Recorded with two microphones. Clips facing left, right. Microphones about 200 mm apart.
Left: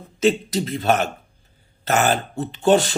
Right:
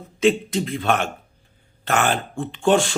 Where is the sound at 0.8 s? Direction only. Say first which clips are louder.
Left 4 dB; 40° left (ahead or behind).